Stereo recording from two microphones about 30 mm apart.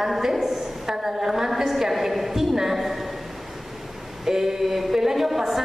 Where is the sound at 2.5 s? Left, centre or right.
Centre.